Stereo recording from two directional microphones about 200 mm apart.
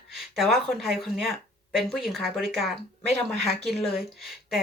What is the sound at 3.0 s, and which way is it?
Speech, 35° left (ahead or behind).